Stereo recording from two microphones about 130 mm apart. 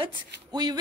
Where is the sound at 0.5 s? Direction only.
30° right (ahead or behind).